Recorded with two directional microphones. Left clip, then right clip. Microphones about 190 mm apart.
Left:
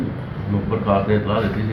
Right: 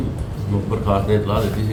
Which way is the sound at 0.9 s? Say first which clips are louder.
Even; 30° right (ahead or behind).